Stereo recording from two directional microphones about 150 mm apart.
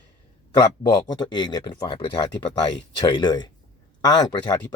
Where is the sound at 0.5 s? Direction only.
30° left (ahead or behind).